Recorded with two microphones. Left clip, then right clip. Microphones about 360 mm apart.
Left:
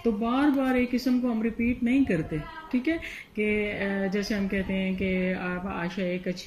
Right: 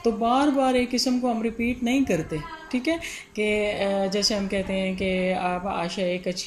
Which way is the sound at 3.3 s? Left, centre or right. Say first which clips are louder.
Right 4 dB; right.